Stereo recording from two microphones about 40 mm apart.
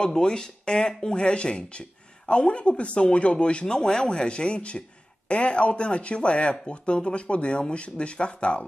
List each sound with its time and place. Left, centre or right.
0.0 s speech: centre